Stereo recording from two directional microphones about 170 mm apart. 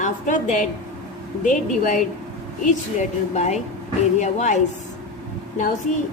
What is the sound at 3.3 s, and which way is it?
A woman's voice, 40° left (ahead or behind).